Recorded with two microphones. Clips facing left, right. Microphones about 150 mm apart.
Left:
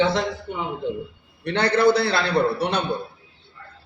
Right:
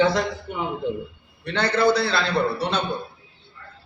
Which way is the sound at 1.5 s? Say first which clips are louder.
Left 2 dB; 60° left (ahead or behind).